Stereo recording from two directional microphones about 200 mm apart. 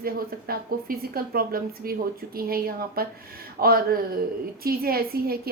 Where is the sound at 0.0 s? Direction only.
50° right (ahead or behind).